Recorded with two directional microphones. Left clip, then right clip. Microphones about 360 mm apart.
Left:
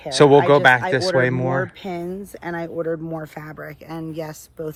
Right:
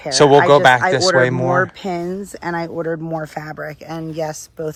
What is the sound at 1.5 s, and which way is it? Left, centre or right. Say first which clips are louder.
Speech: right 6 dB; right.